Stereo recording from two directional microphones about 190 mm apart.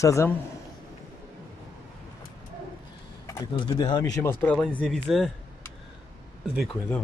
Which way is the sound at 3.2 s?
20° left (ahead or behind).